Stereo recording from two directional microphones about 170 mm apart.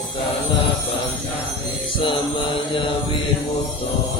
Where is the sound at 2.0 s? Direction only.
30° left (ahead or behind).